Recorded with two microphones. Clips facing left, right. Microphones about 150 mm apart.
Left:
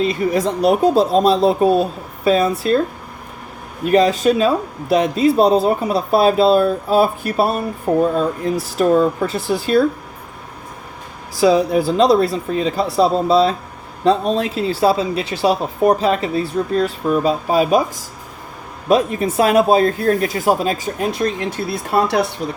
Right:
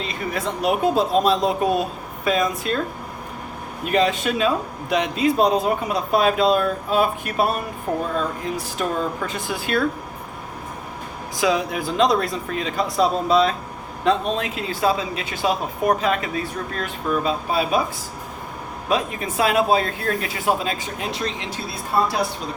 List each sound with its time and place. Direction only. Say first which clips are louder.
0.0 s speech: left 9 dB; 40° left (ahead or behind)
3.8 s speech: left 7 dB; 35° left (ahead or behind)
11.3 s speech: left 8 dB; 35° left (ahead or behind)
18.9 s speech: left 8 dB; 40° left (ahead or behind); by 22.3 s 70° left (ahead or behind)